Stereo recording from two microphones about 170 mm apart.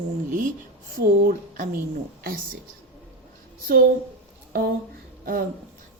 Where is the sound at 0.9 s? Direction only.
60° right (ahead or behind).